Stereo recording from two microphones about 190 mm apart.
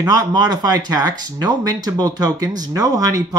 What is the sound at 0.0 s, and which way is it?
Speech, 20° right (ahead or behind).